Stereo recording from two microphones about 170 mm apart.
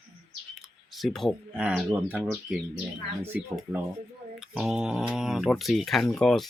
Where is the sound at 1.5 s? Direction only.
10° right (ahead or behind).